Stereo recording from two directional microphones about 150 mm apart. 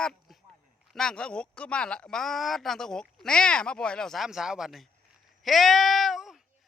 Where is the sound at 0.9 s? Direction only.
5° left (ahead or behind).